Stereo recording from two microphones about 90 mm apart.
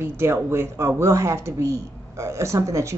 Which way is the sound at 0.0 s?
30° right (ahead or behind).